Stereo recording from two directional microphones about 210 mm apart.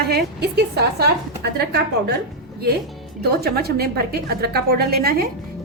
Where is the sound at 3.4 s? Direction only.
50° right (ahead or behind).